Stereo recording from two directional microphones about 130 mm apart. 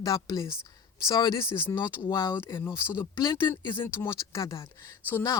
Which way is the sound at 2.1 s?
30° left (ahead or behind).